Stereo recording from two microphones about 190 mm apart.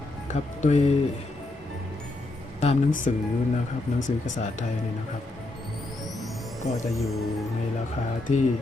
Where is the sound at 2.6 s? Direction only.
40° left (ahead or behind).